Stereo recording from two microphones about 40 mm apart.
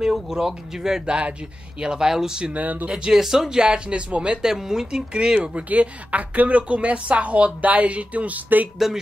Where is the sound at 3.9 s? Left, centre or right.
Right.